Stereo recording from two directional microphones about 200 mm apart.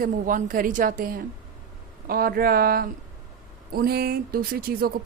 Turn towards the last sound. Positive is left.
turn(degrees=-50)  # may be behind; listen again after turning